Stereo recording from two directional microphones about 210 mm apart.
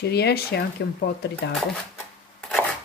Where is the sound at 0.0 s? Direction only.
50° left (ahead or behind).